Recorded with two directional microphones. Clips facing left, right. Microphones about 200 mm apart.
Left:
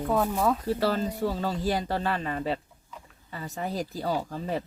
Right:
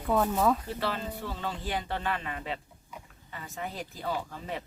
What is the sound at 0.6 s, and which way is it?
Speech, 40° left (ahead or behind).